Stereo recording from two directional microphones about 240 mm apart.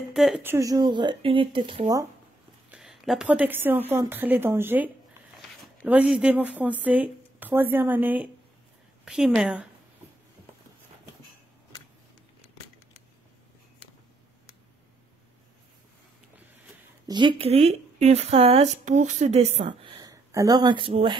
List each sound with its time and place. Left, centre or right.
0.1 s speech: centre
2.7 s a woman's voice: centre
17.1 s speech: centre